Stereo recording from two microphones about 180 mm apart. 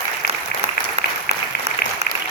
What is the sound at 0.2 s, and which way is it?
Applause, 60° left (ahead or behind).